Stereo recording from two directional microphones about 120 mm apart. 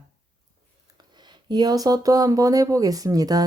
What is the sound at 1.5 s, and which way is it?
Speech, 35° right (ahead or behind).